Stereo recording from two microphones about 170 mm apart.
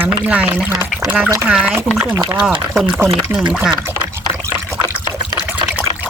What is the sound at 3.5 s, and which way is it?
Liquid, 10° right (ahead or behind).